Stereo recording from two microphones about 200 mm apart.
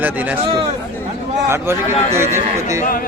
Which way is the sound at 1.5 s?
10° right (ahead or behind).